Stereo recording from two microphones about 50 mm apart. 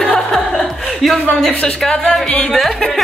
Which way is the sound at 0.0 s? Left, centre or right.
Centre.